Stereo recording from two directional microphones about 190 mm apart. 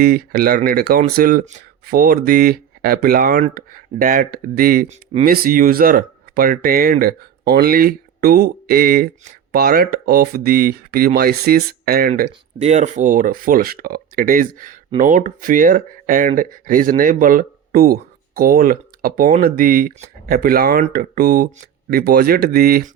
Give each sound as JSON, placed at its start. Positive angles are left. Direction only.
{"t": 0.0, "sound": "speech", "side_deg": -55}
{"t": 12.5, "sound": "speech", "side_deg": -35}